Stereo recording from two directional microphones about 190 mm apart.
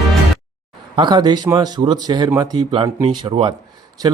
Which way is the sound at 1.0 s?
25° right (ahead or behind).